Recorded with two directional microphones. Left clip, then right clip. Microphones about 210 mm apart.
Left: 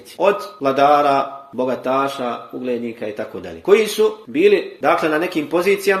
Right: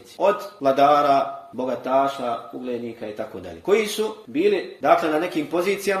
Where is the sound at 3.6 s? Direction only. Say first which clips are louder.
Left 7 dB; 25° left (ahead or behind).